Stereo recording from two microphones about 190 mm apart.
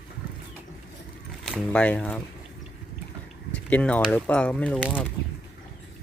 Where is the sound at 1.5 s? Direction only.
5° left (ahead or behind).